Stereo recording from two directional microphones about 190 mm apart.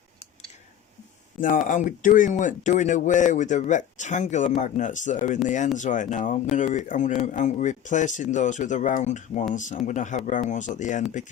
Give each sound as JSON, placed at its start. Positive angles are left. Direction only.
{"t": 1.6, "sound": "speech", "side_deg": 45}